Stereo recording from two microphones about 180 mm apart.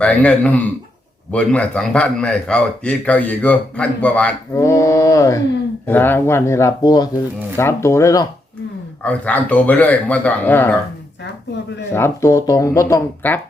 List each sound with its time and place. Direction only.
0.0 s a man's voice: 5° left (ahead or behind)
9.0 s a man's voice: 10° left (ahead or behind)
11.9 s a man's voice: 15° left (ahead or behind)